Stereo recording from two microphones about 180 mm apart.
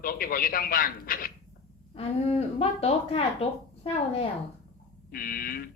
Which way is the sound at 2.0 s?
35° left (ahead or behind).